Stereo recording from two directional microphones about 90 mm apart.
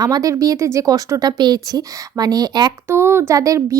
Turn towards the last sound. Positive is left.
turn(degrees=-40)  # may be behind; listen again after turning